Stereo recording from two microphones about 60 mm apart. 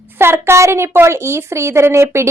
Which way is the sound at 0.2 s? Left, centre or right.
Right.